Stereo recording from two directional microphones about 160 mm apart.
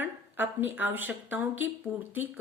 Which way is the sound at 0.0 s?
10° right (ahead or behind).